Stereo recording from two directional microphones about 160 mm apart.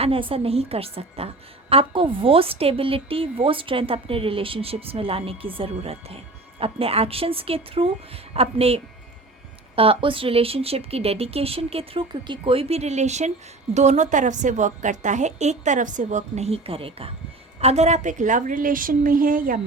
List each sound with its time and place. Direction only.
0.0 s a woman's voice: 35° right (ahead or behind); by 19.6 s 60° right (ahead or behind)